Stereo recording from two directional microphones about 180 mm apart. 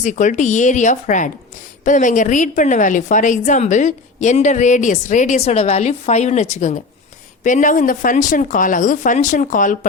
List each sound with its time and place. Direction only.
0.0 s a woman's voice: 45° left (ahead or behind)